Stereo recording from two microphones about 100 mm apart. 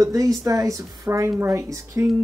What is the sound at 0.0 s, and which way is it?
Speech, 35° right (ahead or behind).